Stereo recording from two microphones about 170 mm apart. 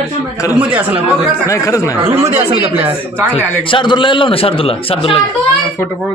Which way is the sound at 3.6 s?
30° left (ahead or behind).